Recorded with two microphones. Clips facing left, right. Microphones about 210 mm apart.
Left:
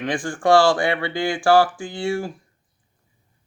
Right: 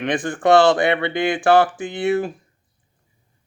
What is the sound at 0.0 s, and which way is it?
Speech, 20° right (ahead or behind).